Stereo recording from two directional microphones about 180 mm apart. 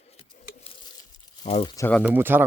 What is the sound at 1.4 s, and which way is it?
Speech, 35° left (ahead or behind).